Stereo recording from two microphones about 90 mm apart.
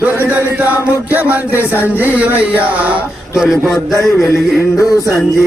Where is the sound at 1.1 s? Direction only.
20° right (ahead or behind).